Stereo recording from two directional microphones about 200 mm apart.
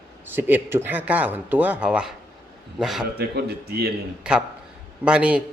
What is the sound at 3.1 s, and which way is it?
Speech, 50° right (ahead or behind).